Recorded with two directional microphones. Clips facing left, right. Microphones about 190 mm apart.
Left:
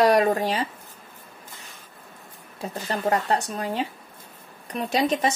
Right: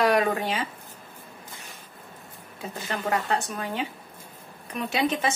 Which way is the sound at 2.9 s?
35° left (ahead or behind).